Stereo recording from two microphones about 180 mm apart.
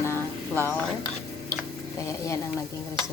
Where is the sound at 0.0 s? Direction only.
15° left (ahead or behind).